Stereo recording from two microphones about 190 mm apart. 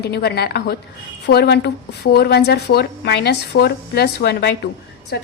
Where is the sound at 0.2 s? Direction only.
60° left (ahead or behind).